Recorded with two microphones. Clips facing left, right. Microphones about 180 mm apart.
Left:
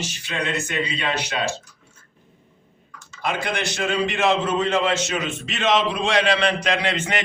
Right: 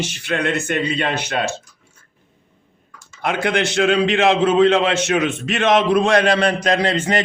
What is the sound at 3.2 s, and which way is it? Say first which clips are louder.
A man's voice: right 6 dB; 60° right (ahead or behind).